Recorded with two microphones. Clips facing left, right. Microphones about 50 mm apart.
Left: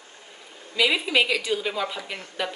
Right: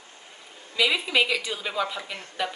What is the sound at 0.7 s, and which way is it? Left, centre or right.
Speech, centre.